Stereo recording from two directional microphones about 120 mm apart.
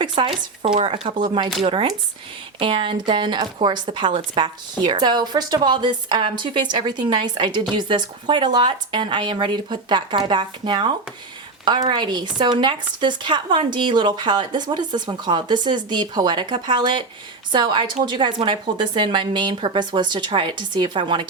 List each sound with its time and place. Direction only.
0.0 s a woman's voice: 45° right (ahead or behind)